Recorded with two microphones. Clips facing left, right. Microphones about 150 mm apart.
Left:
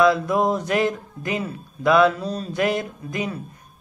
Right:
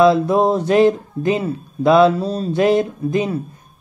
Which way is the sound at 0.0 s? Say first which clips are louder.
Right 5 dB; 30° right (ahead or behind).